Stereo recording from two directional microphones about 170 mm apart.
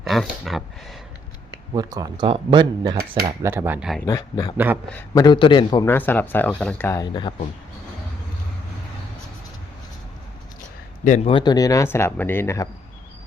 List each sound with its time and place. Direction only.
0.0 s speech: centre (ahead or behind)
1.7 s speech: 20° right (ahead or behind); by 4.0 s 5° right (ahead or behind)
4.0 s a man's voice: 20° left (ahead or behind)
4.5 s speech: 10° right (ahead or behind)
4.9 s a man's voice: 20° left (ahead or behind)
5.8 s speech: 10° left (ahead or behind)
11.0 s a man's voice: 45° left (ahead or behind)
11.3 s speech: 25° left (ahead or behind)